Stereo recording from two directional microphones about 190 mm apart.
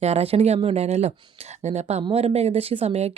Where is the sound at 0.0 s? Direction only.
35° right (ahead or behind).